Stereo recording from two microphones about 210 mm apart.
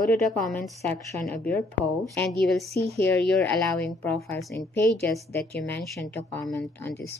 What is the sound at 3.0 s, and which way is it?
A woman's voice, 5° left (ahead or behind).